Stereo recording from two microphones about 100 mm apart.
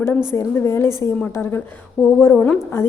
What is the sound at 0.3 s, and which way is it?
A woman's voice, 25° left (ahead or behind).